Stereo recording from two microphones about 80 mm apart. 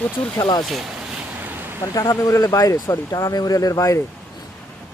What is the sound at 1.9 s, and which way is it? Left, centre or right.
Speech, left.